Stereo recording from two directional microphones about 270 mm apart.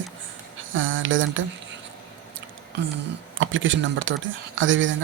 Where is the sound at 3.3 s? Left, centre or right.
Right.